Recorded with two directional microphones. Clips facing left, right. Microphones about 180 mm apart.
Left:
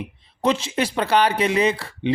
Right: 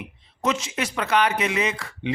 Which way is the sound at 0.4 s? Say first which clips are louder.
Left 4 dB; 30° left (ahead or behind).